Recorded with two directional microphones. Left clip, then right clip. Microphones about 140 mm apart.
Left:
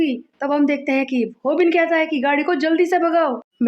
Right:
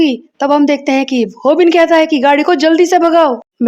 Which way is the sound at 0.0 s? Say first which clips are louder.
Right 9 dB; 45° right (ahead or behind).